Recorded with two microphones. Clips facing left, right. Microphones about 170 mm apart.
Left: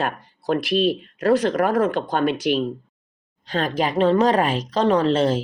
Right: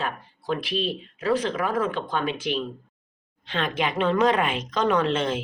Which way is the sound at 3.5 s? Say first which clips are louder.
Left 4 dB; 40° left (ahead or behind).